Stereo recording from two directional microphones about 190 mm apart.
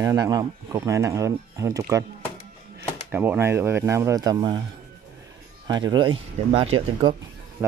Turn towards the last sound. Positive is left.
turn(degrees=-30)  # may be behind; listen again after turning